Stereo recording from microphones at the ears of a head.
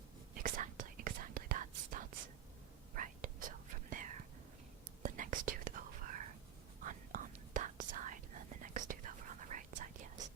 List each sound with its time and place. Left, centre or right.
0.3 s whispering: right